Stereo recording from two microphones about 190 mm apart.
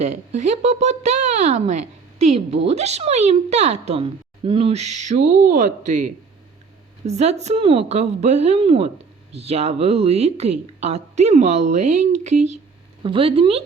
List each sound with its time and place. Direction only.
0.0 s speech: 40° right (ahead or behind)
13.0 s speech: 25° right (ahead or behind)